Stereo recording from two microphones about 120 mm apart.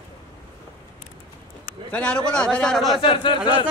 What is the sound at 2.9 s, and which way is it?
Speech, 45° left (ahead or behind).